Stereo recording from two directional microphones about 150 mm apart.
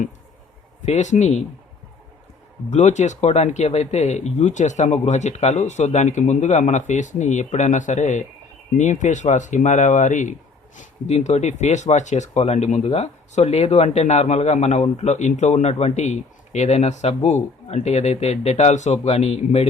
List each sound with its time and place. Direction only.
0.9 s speech: 50° left (ahead or behind)
2.6 s speech: 50° left (ahead or behind)